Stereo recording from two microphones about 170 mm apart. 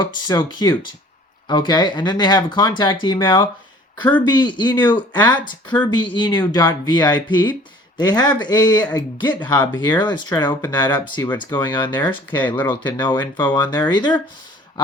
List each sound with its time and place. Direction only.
0.0 s speech: 25° left (ahead or behind)
9.7 s speech: 10° left (ahead or behind)
10.0 s speech: 25° left (ahead or behind)
12.5 s speech: 10° left (ahead or behind)
13.0 s speech: 25° left (ahead or behind)